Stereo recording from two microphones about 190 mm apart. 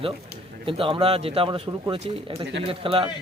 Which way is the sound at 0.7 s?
30° right (ahead or behind).